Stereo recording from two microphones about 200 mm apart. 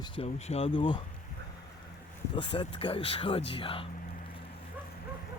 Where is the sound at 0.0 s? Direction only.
25° left (ahead or behind).